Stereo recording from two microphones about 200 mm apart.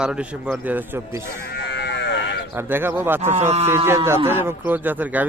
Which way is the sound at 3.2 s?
35° right (ahead or behind).